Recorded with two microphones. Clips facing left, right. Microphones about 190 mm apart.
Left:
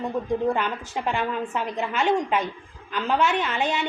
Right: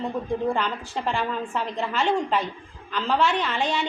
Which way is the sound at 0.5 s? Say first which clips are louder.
Even; 10° left (ahead or behind).